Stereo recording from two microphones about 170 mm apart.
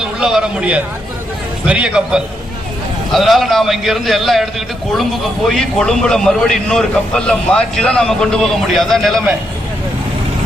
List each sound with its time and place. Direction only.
0.0 s a man's voice: 5° right (ahead or behind)
5.5 s a man's voice: 5° left (ahead or behind)